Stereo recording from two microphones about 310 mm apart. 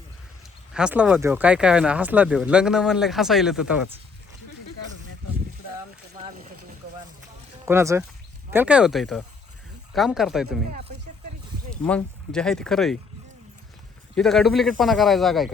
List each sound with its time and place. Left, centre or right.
0.7 s speech: centre
6.1 s speech: right
7.6 s speech: centre
10.7 s speech: right
11.8 s speech: centre
14.2 s speech: centre